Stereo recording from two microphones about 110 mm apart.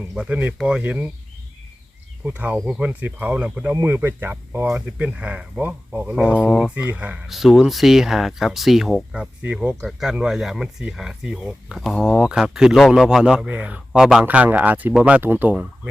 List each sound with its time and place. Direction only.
0.2 s speech: 15° right (ahead or behind)
2.2 s speech: 15° right (ahead or behind)
7.3 s speech: centre (ahead or behind)